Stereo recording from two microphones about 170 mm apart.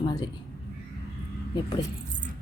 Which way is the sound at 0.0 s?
25° left (ahead or behind).